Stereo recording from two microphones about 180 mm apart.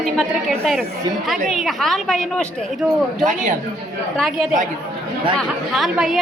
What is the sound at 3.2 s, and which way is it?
Speech, 45° right (ahead or behind).